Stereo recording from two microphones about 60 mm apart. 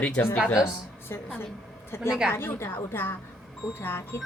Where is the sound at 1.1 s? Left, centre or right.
Left.